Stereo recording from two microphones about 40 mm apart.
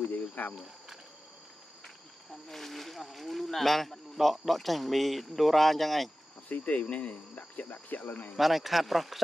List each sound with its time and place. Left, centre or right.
0.3 s cricket: left
2.4 s speech: centre
6.5 s speech: left
8.4 s speech: centre